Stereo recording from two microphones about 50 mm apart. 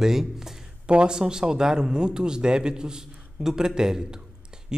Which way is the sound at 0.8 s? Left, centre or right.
Centre.